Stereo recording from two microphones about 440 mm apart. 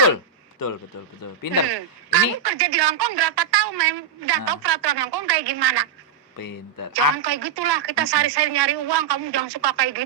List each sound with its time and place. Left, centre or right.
1.7 s a man's voice: right
6.3 s speech: left
6.9 s a man's voice: right